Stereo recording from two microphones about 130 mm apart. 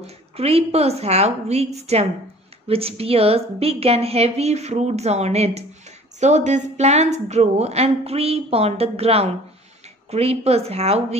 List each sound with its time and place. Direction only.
0.0 s a woman's voice: 50° right (ahead or behind)